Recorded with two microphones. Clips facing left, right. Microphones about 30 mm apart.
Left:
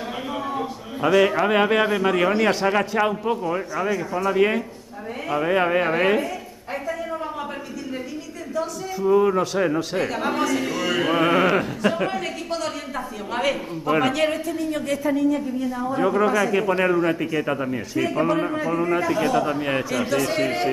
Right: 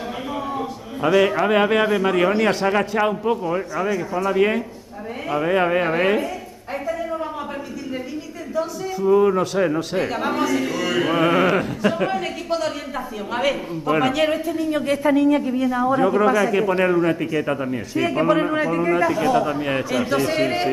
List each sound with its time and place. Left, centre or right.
0.5 s speech: centre
6.7 s a sound: centre
8.5 s speech: centre
15.0 s speech: right
15.6 s speech: right
16.0 s speech: centre
17.9 s a man's voice: centre
18.7 s a man's voice: centre